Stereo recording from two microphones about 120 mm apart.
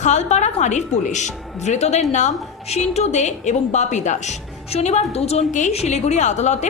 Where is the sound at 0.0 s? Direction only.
85° left.